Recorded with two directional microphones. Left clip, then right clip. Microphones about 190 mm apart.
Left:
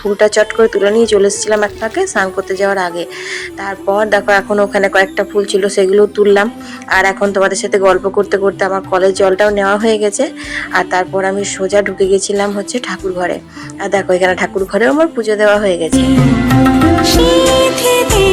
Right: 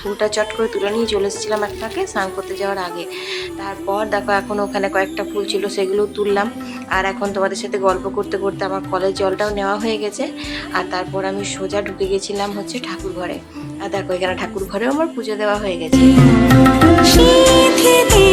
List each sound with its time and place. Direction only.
0.2 s a woman's voice: 25° left (ahead or behind)
16.1 s music: centre (ahead or behind)